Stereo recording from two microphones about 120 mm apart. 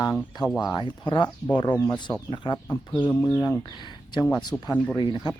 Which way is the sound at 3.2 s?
30° left (ahead or behind).